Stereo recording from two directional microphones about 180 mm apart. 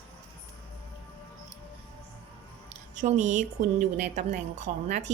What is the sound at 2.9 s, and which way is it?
A woman's voice, 40° right (ahead or behind).